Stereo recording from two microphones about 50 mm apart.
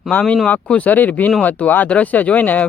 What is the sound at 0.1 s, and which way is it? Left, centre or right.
Speech, left.